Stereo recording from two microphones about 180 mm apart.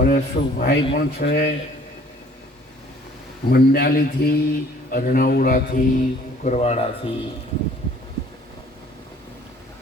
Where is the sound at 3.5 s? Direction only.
60° left (ahead or behind).